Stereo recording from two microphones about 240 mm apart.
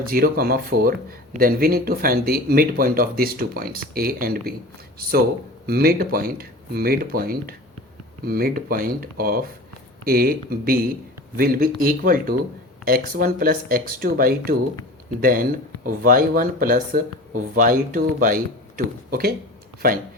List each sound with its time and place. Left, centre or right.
0.0 s speech: right
5.6 s speech: right
19.8 s speech: right